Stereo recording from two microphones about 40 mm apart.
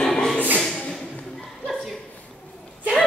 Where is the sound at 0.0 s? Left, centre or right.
Centre.